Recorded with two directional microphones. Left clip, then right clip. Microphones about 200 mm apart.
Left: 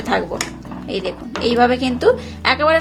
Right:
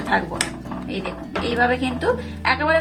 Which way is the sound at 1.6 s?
45° left (ahead or behind).